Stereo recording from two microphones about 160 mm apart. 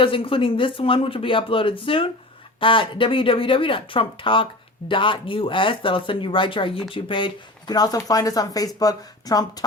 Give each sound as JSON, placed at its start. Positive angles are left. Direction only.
{"t": 0.0, "sound": "speech", "side_deg": 35}